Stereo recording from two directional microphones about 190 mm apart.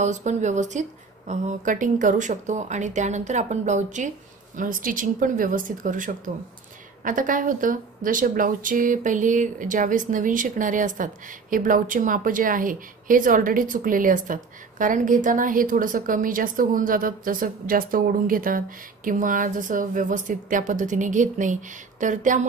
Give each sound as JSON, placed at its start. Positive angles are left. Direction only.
{"t": 0.0, "sound": "speech", "side_deg": -40}